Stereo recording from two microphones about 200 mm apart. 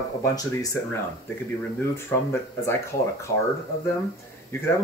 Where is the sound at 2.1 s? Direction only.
10° left (ahead or behind).